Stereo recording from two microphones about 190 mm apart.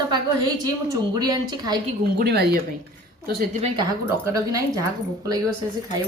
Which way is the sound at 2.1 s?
60° right (ahead or behind).